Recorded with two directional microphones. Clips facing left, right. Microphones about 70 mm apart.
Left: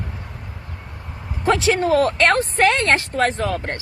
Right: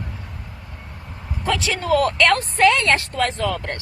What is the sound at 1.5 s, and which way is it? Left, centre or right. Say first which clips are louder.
A woman's voice: left 4 dB; left.